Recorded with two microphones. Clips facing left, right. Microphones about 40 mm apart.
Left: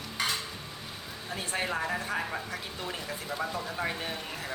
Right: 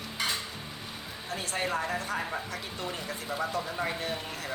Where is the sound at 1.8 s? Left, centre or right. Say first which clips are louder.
Even; centre.